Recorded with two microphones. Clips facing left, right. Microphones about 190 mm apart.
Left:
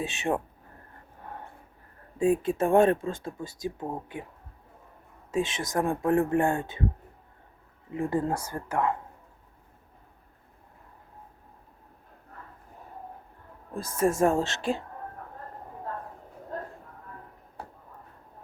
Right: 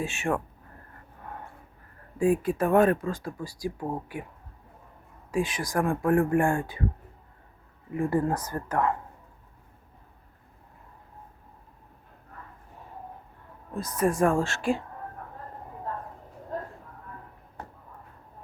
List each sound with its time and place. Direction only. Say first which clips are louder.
0.0 s speech: even; 20° left (ahead or behind)
2.1 s speech: even; 25° left (ahead or behind)
5.3 s speech: even; 25° left (ahead or behind)
8.1 s speech: right 2 dB; 15° left (ahead or behind)
13.7 s speech: even; 25° left (ahead or behind)